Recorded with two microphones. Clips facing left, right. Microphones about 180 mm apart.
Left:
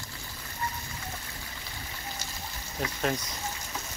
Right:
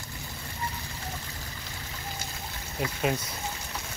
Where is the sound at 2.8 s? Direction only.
5° right (ahead or behind).